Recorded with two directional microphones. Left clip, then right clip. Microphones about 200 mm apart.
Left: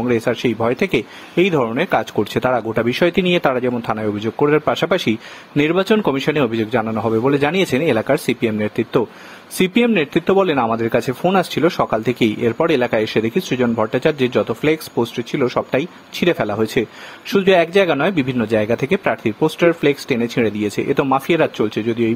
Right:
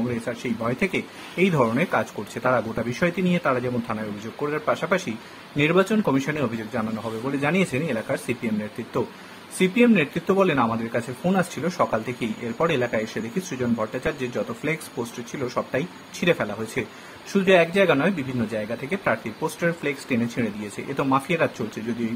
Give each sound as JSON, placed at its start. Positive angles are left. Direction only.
{"t": 0.2, "sound": "speech", "side_deg": 40}
{"t": 9.6, "sound": "speech", "side_deg": 45}